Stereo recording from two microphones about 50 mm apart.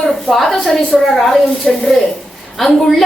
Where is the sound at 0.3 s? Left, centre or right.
Centre.